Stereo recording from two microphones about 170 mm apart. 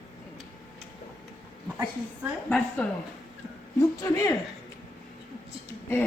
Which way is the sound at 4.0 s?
20° left (ahead or behind).